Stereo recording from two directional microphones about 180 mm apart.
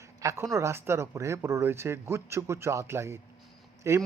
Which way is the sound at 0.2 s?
15° right (ahead or behind).